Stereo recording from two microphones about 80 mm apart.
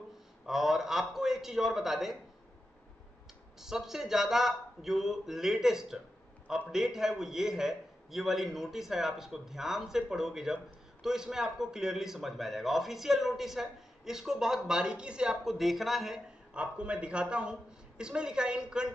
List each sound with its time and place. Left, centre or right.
0.5 s a man's voice: centre
3.5 s a man's voice: centre
16.5 s a woman's voice: centre